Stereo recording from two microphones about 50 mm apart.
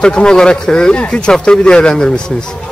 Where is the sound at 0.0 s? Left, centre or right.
Centre.